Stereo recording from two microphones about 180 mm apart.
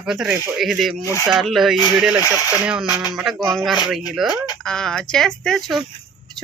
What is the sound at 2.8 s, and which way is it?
Speech, 20° left (ahead or behind).